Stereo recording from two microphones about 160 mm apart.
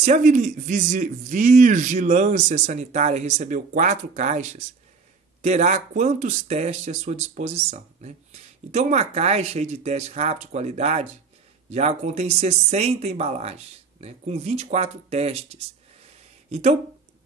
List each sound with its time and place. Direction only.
0.0 s speech: 50° right (ahead or behind)
16.4 s speech: 40° right (ahead or behind)